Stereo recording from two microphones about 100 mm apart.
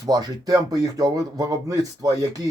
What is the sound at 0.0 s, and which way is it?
Speech, 40° right (ahead or behind).